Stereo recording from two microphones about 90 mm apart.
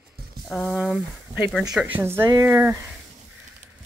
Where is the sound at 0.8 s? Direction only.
10° right (ahead or behind).